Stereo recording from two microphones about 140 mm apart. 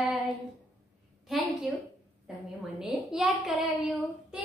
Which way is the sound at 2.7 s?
5° right (ahead or behind).